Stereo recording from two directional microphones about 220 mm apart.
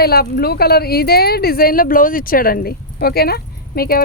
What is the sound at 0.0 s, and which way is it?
Speech, 45° left (ahead or behind).